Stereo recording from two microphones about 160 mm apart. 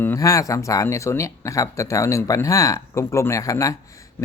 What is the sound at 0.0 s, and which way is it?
A man's voice, 20° left (ahead or behind).